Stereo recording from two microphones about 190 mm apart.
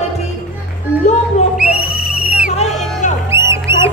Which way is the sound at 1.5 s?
5° right (ahead or behind).